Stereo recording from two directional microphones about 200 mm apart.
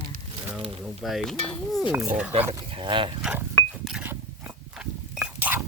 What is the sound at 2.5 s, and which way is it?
Speech, 30° right (ahead or behind).